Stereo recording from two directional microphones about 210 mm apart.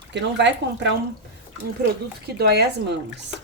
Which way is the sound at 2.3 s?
50° right (ahead or behind).